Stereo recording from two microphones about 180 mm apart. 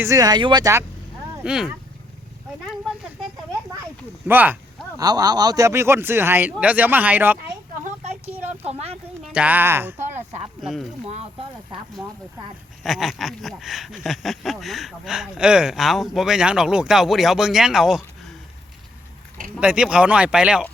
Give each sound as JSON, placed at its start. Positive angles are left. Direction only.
{"t": 0.0, "sound": "speech", "side_deg": -20}
{"t": 1.5, "sound": "speech", "side_deg": -5}
{"t": 4.3, "sound": "a man's voice", "side_deg": -10}
{"t": 4.9, "sound": "a man's voice", "side_deg": -20}
{"t": 8.4, "sound": "a sound", "side_deg": -35}
{"t": 9.2, "sound": "a man's voice", "side_deg": -5}
{"t": 10.0, "sound": "speech", "side_deg": -35}
{"t": 10.6, "sound": "speech", "side_deg": 0}
{"t": 11.0, "sound": "speech", "side_deg": -35}
{"t": 12.0, "sound": "a man's voice", "side_deg": -15}
{"t": 12.8, "sound": "speech", "side_deg": 0}
{"t": 19.5, "sound": "speech", "side_deg": -5}